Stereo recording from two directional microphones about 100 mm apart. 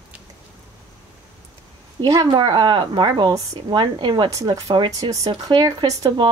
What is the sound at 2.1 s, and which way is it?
A woman's voice, 40° right (ahead or behind).